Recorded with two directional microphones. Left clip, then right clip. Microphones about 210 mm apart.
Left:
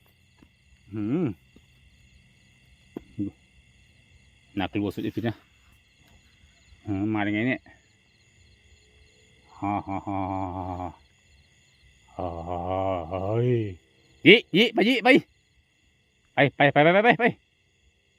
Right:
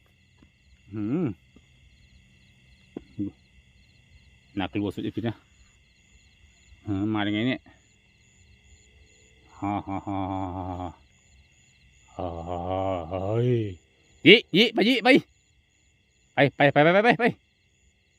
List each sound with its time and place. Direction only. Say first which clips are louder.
0.9 s speech: left 1 dB; 10° left (ahead or behind)
3.0 s a sound: even; 25° left (ahead or behind)
4.5 s speech: left 1 dB; 10° left (ahead or behind)
6.8 s speech: even; 5° right (ahead or behind)
9.6 s mantra: left 1 dB; 5° right (ahead or behind)
12.0 s mantra: left 1 dB; 5° right (ahead or behind)
16.3 s mantra: even; 5° right (ahead or behind)